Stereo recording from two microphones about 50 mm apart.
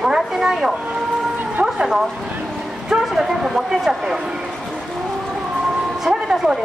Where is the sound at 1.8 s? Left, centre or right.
Centre.